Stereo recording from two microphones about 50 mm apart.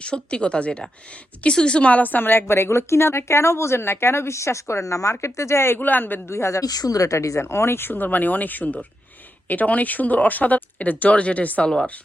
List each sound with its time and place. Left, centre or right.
0.0 s speech: left
5.2 s speech: left
5.8 s a man's voice: left
6.3 s speech: left
6.8 s speech: left
7.2 s speech: left